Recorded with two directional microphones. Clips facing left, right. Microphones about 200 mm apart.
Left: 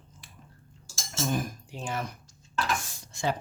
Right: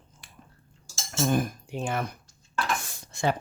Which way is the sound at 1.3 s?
55° right (ahead or behind).